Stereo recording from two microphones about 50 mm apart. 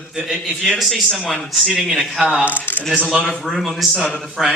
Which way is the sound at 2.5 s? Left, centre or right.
Left.